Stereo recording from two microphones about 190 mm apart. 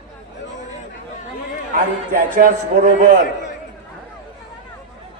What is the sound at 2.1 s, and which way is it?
Speech, 45° right (ahead or behind).